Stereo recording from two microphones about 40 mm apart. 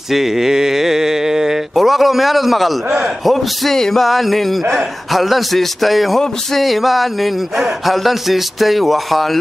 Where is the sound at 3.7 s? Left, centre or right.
Centre.